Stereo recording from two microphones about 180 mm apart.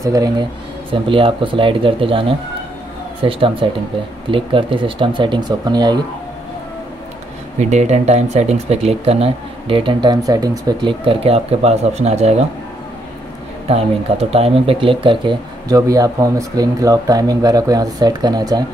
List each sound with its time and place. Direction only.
0.0 s speech: 20° right (ahead or behind)
7.5 s speech: 40° right (ahead or behind)
13.7 s speech: 35° right (ahead or behind)